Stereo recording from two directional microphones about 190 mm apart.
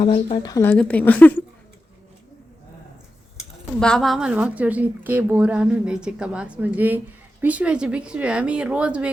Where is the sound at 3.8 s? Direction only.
Centre (ahead or behind).